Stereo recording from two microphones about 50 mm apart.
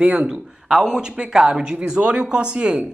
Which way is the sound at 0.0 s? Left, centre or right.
Right.